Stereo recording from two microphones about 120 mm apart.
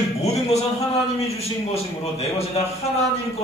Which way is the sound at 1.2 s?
60° left (ahead or behind).